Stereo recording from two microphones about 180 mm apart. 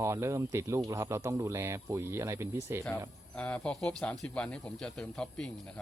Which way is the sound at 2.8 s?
5° left (ahead or behind).